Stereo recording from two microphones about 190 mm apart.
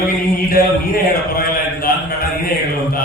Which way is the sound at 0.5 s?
50° left (ahead or behind).